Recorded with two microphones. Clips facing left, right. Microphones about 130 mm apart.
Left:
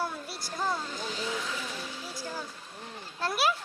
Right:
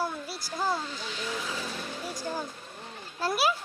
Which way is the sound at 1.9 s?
50° right (ahead or behind).